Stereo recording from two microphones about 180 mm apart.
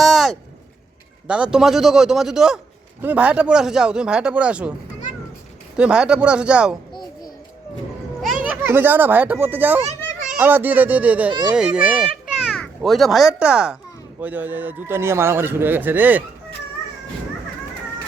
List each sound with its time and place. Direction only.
0.0 s a sound: centre (ahead or behind)
1.3 s speech: 5° right (ahead or behind)
5.7 s speech: 5° right (ahead or behind)
6.9 s a sound: 25° left (ahead or behind)
8.2 s speech: 5° right (ahead or behind)
9.8 s children playing: 35° right (ahead or behind)
10.3 s a child's voice: 10° right (ahead or behind)